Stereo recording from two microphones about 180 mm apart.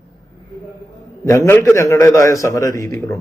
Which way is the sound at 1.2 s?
15° left (ahead or behind).